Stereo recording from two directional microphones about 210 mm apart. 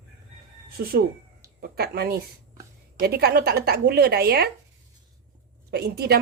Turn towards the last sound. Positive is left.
turn(degrees=-50)  # may be behind; listen again after turning